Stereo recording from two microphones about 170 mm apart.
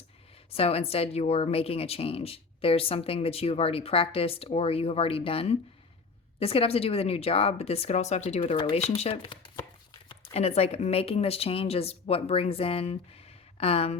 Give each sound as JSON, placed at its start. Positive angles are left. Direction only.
{"t": 0.5, "sound": "a woman's voice", "side_deg": 35}
{"t": 9.0, "sound": "a sound", "side_deg": 30}
{"t": 10.3, "sound": "a woman's voice", "side_deg": 40}